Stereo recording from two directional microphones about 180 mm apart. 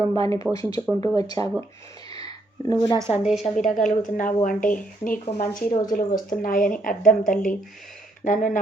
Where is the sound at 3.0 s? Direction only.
15° right (ahead or behind).